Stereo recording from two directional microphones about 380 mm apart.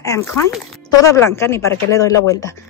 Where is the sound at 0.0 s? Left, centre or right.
Centre.